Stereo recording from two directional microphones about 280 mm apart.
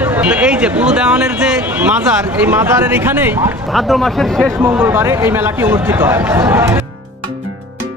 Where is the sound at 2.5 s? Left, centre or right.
Centre.